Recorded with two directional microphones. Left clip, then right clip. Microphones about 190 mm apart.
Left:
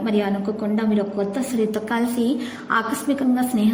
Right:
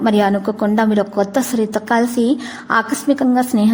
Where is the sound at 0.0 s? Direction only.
45° right (ahead or behind).